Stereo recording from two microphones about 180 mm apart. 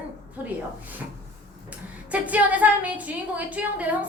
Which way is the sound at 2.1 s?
10° right (ahead or behind).